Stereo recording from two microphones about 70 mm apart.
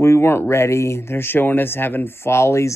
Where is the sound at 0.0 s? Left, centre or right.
Left.